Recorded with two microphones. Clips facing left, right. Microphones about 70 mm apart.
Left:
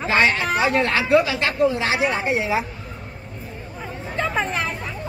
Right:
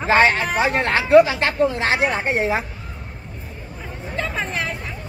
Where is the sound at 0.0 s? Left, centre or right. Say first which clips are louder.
Right 3 dB; right.